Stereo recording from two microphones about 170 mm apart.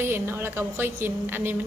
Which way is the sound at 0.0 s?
15° right (ahead or behind).